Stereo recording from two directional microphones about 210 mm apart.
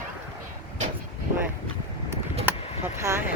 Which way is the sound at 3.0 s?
15° right (ahead or behind).